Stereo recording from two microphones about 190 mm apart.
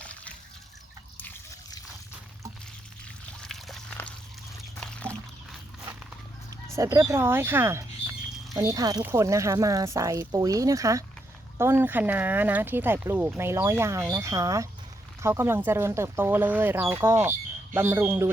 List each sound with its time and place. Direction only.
0.0 s water: 5° left (ahead or behind)
3.5 s a sound: centre (ahead or behind)
4.8 s pour: 5° left (ahead or behind)
6.7 s speech: 15° right (ahead or behind)